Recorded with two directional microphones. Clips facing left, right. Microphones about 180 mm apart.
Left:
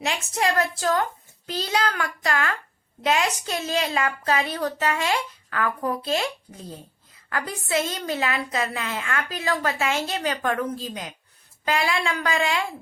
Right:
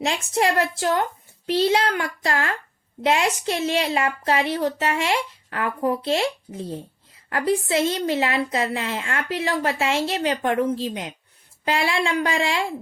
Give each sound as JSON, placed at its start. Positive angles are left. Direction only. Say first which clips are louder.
{"t": 0.0, "sound": "a woman's voice", "louder": "right 3 dB", "side_deg": -30}